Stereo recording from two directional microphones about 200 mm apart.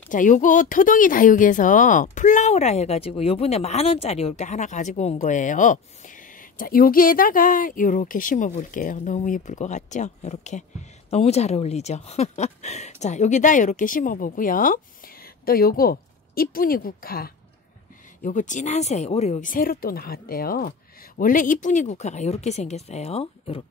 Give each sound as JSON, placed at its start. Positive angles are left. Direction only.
{"t": 0.1, "sound": "speech", "side_deg": 40}